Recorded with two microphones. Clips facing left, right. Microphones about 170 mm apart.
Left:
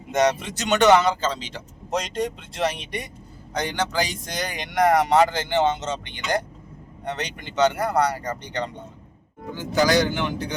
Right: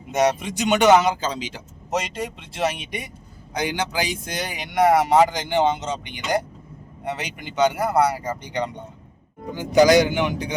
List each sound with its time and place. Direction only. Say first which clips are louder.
0.1 s speech: right 1 dB; 10° right (ahead or behind)